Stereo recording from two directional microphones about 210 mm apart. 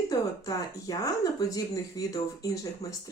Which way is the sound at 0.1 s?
15° left (ahead or behind).